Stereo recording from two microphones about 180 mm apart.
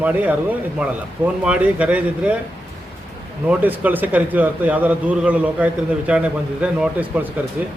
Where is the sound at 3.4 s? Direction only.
10° right (ahead or behind).